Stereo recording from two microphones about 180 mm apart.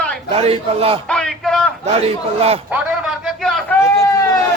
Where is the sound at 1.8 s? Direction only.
35° right (ahead or behind).